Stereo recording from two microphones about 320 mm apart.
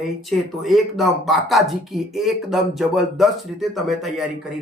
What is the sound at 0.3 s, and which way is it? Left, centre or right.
Speech, centre.